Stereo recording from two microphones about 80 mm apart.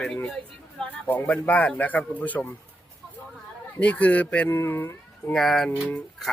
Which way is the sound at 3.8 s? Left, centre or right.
Centre.